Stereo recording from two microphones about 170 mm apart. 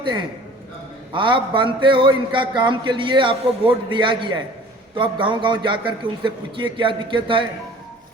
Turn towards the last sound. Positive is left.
turn(degrees=-30)  # may be behind; listen again after turning